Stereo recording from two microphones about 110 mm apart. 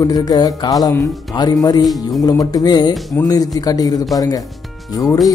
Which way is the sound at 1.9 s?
Centre (ahead or behind).